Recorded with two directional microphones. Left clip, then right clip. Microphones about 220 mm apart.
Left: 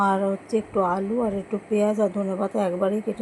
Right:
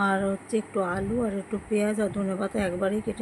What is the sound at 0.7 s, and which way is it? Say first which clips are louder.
Speech: left 6 dB; 15° right (ahead or behind).